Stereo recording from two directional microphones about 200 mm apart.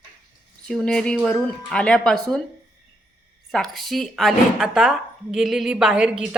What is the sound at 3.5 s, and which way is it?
Speech, centre (ahead or behind).